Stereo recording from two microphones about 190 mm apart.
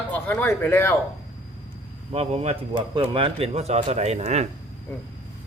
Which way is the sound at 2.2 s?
30° right (ahead or behind).